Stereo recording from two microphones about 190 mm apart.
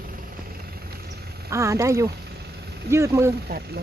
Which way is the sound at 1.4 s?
15° right (ahead or behind).